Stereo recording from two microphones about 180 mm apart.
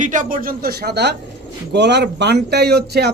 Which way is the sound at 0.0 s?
45° right (ahead or behind).